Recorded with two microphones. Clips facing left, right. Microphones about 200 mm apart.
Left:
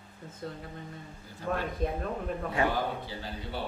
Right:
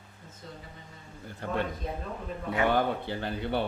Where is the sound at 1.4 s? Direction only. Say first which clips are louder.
Left 1 dB; 60° right (ahead or behind).